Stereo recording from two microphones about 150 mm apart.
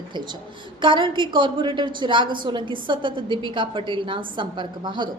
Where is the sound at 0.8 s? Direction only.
35° right (ahead or behind).